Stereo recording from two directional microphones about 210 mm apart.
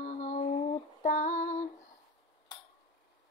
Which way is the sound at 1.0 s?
35° left (ahead or behind).